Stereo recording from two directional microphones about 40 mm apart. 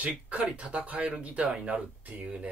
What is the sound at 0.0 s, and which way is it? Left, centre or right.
Speech, right.